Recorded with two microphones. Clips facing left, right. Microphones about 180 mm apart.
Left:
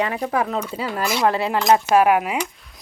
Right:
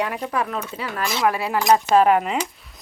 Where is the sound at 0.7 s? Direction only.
30° left (ahead or behind); by 2.3 s 10° left (ahead or behind).